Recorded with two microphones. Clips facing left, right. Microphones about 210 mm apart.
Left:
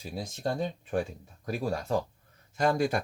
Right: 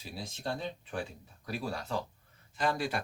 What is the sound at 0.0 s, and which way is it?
Speech, 45° left (ahead or behind).